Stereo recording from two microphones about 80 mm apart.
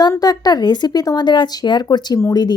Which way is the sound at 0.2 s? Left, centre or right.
Left.